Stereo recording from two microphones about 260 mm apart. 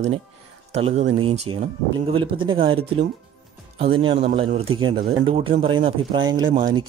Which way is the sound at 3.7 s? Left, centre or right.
Right.